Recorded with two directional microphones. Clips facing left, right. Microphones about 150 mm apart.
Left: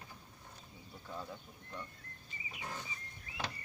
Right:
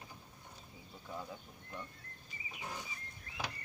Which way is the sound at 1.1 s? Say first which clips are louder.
Even; 10° right (ahead or behind).